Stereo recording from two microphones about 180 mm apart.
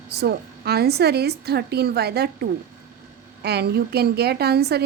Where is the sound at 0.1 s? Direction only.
65° right (ahead or behind).